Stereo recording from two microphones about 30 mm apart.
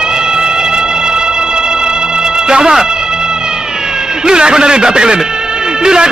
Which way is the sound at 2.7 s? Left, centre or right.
Right.